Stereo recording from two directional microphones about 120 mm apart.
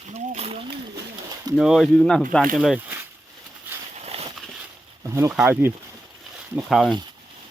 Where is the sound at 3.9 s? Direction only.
60° right (ahead or behind).